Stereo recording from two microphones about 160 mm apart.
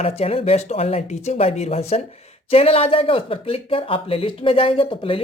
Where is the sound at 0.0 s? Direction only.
40° left (ahead or behind).